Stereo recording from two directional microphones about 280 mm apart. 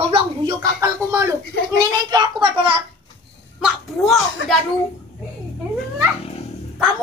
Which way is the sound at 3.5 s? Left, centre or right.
Centre.